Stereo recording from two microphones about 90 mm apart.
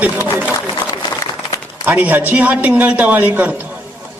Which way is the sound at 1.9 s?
20° right (ahead or behind).